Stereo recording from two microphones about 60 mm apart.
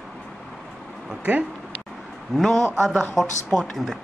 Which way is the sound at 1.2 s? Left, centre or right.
Centre.